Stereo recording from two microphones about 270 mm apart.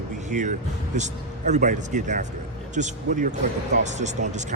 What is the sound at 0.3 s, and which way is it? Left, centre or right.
Speech, right.